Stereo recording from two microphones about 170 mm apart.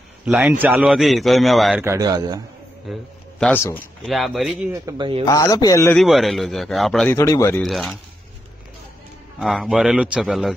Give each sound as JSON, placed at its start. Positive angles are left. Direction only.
{"t": 0.2, "sound": "a man's voice", "side_deg": -5}
{"t": 1.8, "sound": "a man's voice", "side_deg": -20}
{"t": 2.9, "sound": "a man's voice", "side_deg": 5}
{"t": 4.7, "sound": "a man's voice", "side_deg": -25}
{"t": 5.2, "sound": "a man's voice", "side_deg": 20}
{"t": 5.9, "sound": "a man's voice", "side_deg": 0}
{"t": 7.1, "sound": "speech", "side_deg": 15}
{"t": 7.6, "sound": "a man's voice", "side_deg": 0}
{"t": 9.4, "sound": "a man's voice", "side_deg": 0}